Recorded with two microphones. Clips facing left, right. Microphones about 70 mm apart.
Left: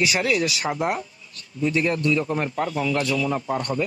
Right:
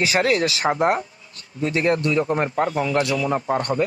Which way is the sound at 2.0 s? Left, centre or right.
Right.